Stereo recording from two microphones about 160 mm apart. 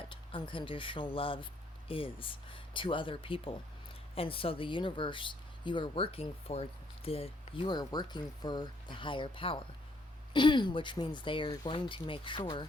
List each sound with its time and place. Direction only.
0.1 s speech: 30° left (ahead or behind)